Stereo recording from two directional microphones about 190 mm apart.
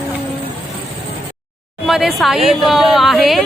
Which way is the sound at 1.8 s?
Centre (ahead or behind).